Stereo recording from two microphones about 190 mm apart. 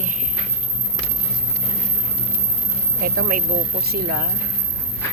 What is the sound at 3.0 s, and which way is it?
Speech, 50° right (ahead or behind).